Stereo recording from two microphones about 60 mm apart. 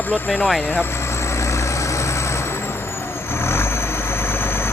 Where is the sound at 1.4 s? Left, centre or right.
Left.